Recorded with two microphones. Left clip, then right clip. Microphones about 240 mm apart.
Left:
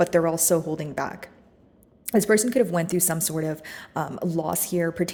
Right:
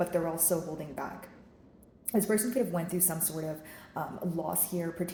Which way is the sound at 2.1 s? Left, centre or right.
Left.